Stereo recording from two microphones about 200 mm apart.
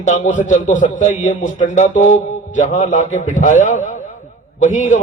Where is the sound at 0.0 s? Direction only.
35° left (ahead or behind).